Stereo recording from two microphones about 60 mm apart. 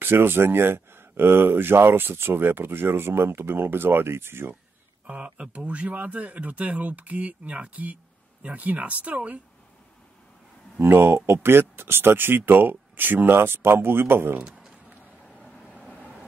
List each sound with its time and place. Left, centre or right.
0.0 s speech: right
5.0 s speech: centre
10.8 s speech: right